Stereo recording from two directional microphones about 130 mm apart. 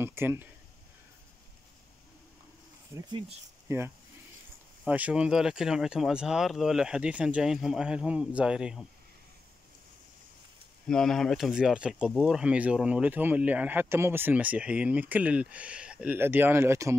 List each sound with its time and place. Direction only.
0.0 s speech: 20° right (ahead or behind)
2.9 s speech: 25° right (ahead or behind); by 8.8 s 5° right (ahead or behind)
10.9 s speech: 5° left (ahead or behind); by 16.9 s 20° right (ahead or behind)